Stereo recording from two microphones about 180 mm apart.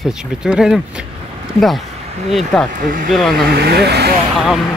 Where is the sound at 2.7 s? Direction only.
50° right (ahead or behind).